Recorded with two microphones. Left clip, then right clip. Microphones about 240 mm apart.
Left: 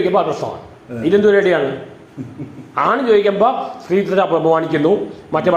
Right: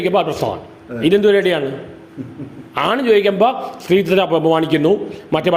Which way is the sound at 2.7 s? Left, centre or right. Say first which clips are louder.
Left 1 dB; right.